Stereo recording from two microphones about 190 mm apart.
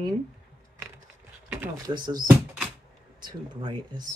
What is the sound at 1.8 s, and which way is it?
Speech, 20° right (ahead or behind).